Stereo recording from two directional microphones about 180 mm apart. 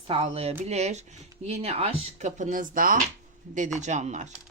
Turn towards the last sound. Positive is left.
turn(degrees=-40)  # may be behind; listen again after turning